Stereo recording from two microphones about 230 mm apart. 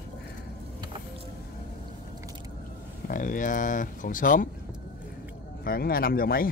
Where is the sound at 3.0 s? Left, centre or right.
Left.